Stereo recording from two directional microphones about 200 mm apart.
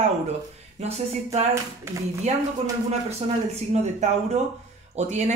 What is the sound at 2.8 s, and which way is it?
Speech, 30° right (ahead or behind).